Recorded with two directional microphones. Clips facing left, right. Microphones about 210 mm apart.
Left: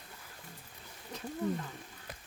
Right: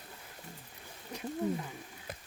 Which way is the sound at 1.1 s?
10° right (ahead or behind).